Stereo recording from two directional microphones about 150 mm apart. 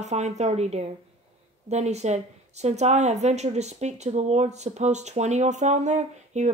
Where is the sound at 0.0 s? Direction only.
50° right (ahead or behind).